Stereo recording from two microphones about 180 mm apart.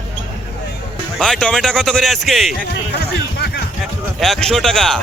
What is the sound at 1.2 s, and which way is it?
Speech, 5° left (ahead or behind).